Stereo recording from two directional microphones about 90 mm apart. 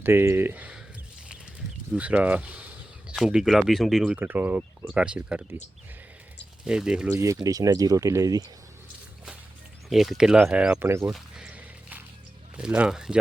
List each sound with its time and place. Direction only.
0.0 s speech: 25° right (ahead or behind)
2.0 s a sound: 15° right (ahead or behind)
3.2 s speech: 5° right (ahead or behind)
4.2 s speech: 20° right (ahead or behind)
6.7 s speech: 10° right (ahead or behind)
7.1 s speech: 35° right (ahead or behind)
9.9 s speech: 5° right (ahead or behind)
10.8 s speech: 30° right (ahead or behind)
11.1 s a sound: 10° right (ahead or behind)
12.5 s speech: 10° right (ahead or behind)